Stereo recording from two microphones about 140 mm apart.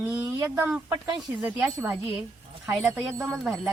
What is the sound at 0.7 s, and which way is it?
Speech, 10° right (ahead or behind).